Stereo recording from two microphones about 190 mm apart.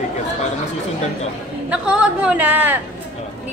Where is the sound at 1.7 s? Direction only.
5° right (ahead or behind).